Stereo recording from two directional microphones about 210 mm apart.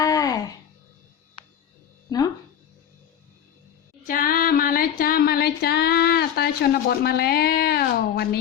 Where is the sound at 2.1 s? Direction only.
20° left (ahead or behind).